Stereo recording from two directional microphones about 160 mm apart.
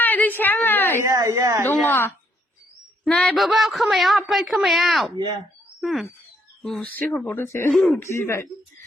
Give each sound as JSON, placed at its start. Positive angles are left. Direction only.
{"t": 0.0, "sound": "a sound", "side_deg": 10}
{"t": 1.0, "sound": "speech", "side_deg": -20}
{"t": 1.6, "sound": "speech", "side_deg": 15}
{"t": 5.1, "sound": "speech", "side_deg": -25}
{"t": 5.8, "sound": "speech", "side_deg": 0}
{"t": 7.7, "sound": "speech", "side_deg": 0}
{"t": 7.9, "sound": "speech", "side_deg": 15}